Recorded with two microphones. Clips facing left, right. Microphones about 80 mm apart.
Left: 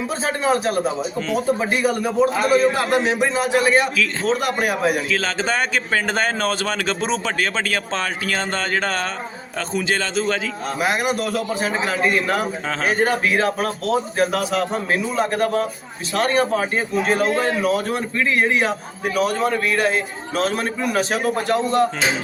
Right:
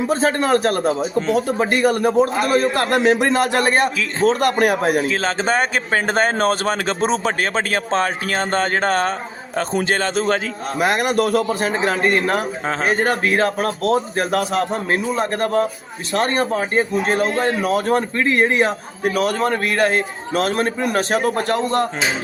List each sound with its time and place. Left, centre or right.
0.1 s a man's voice: right
4.3 s a man's voice: right